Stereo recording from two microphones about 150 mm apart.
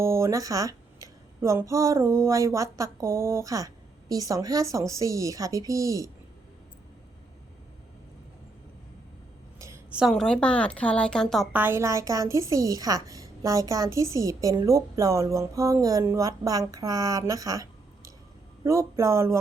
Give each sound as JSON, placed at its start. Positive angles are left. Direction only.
{"t": 0.0, "sound": "a woman's voice", "side_deg": -20}
{"t": 9.6, "sound": "a sound", "side_deg": -20}
{"t": 9.9, "sound": "a woman's voice", "side_deg": -5}
{"t": 11.5, "sound": "a woman's voice", "side_deg": -15}